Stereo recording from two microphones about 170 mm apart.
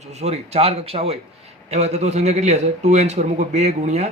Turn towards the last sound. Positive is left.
turn(degrees=-40)  # may be behind; listen again after turning